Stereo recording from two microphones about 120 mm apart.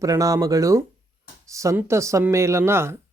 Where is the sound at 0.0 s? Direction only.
30° right (ahead or behind).